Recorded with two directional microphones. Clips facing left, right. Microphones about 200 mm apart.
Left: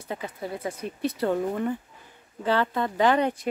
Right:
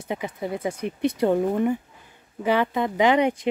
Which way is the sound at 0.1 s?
20° right (ahead or behind).